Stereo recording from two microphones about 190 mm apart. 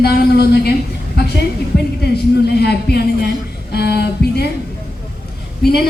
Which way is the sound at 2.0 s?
60° left (ahead or behind).